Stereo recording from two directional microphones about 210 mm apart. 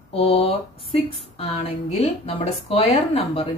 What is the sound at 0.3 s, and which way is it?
A woman's voice, 25° left (ahead or behind).